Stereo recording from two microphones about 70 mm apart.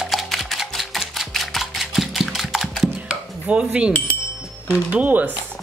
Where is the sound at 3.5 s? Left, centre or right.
Centre.